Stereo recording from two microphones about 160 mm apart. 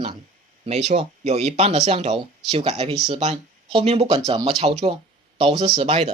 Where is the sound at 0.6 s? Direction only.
45° right (ahead or behind).